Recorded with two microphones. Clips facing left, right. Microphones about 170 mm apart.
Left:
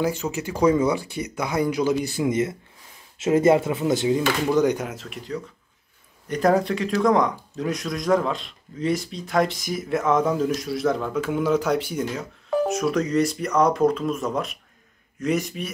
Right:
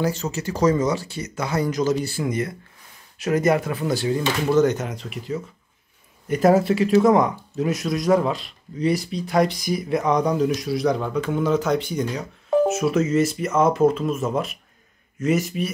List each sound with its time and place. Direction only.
0.0 s speech: 10° left (ahead or behind)